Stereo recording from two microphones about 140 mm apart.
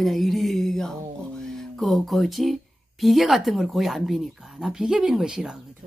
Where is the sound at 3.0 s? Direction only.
Centre (ahead or behind).